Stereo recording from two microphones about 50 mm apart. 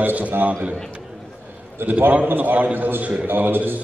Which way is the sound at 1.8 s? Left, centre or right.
Right.